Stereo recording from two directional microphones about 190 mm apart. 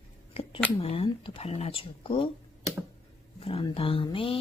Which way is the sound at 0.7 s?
30° left (ahead or behind).